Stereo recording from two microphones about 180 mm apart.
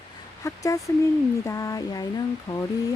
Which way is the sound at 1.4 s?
15° left (ahead or behind).